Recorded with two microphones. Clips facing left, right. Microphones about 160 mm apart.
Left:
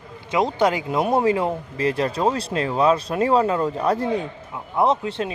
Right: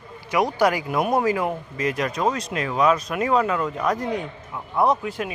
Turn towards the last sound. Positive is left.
turn(degrees=30)  # may be behind; listen again after turning